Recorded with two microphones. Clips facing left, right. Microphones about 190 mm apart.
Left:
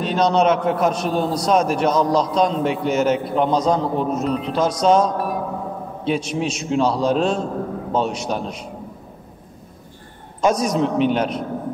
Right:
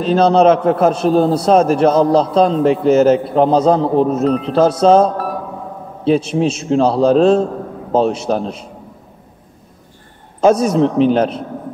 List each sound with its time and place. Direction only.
0.0 s a man's voice: 35° right (ahead or behind)
10.4 s a man's voice: 30° right (ahead or behind)